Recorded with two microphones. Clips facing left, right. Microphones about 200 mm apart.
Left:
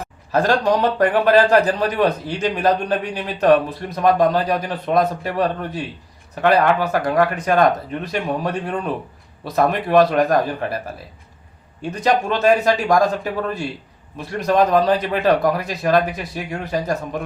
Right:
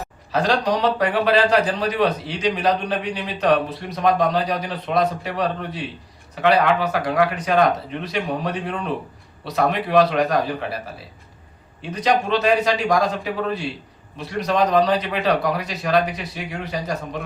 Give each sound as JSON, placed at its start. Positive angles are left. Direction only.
{"t": 0.3, "sound": "speech", "side_deg": 50}